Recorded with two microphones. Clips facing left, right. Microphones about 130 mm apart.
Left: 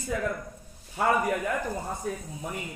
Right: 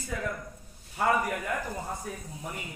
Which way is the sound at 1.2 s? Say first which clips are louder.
Left 4 dB; 20° left (ahead or behind).